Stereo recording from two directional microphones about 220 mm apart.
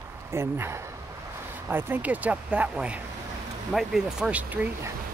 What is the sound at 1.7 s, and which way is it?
Speech, 10° right (ahead or behind).